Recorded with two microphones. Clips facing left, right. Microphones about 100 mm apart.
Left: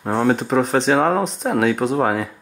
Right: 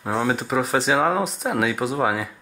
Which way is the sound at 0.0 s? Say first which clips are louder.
Left 5 dB; centre (ahead or behind).